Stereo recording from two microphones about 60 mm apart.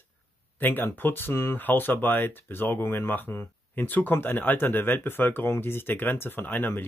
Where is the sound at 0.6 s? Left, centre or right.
Left.